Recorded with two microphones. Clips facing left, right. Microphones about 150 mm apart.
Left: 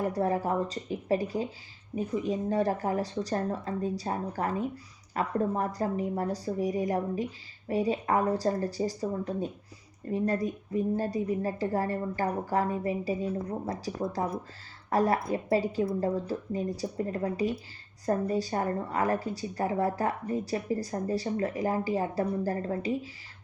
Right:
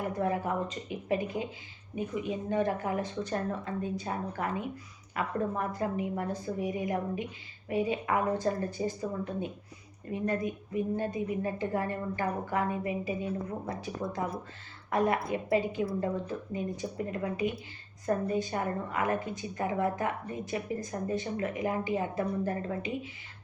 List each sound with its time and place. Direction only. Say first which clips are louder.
0.1 s speech: left 3 dB; 35° left (ahead or behind)